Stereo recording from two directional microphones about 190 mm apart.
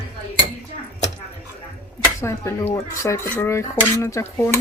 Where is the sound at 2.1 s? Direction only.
15° left (ahead or behind).